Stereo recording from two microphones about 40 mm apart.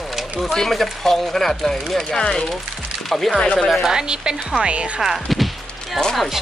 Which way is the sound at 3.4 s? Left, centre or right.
Left.